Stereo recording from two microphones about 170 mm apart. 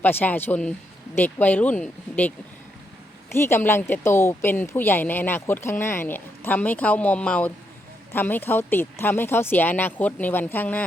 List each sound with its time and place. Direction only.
0.0 s speech: 10° left (ahead or behind)
3.3 s speech: 15° left (ahead or behind)